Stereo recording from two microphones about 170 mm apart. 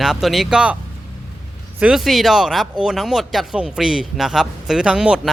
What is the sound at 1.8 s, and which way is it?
Speech, centre (ahead or behind).